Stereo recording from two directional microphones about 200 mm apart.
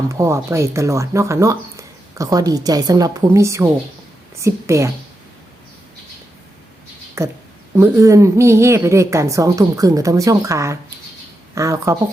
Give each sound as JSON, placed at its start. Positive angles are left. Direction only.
{"t": 0.1, "sound": "a woman's voice", "side_deg": -15}
{"t": 7.2, "sound": "speech", "side_deg": -15}